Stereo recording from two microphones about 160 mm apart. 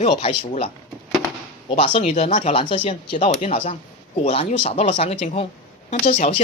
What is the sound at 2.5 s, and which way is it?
Speech, 30° left (ahead or behind).